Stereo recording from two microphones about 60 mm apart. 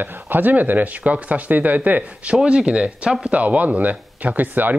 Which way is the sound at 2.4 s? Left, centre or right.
Centre.